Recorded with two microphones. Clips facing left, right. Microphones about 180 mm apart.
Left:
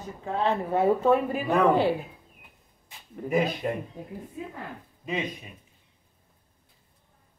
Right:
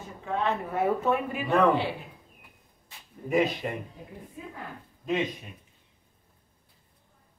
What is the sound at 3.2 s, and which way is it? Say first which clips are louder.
Speech: left 1 dB; 90° left.